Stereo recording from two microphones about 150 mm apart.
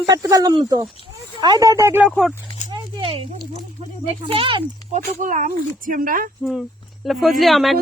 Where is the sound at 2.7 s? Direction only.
30° right (ahead or behind).